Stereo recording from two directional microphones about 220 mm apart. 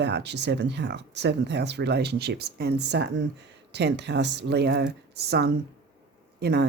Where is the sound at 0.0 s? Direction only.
50° right (ahead or behind).